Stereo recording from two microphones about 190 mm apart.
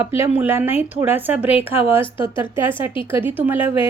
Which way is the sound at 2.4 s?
10° right (ahead or behind).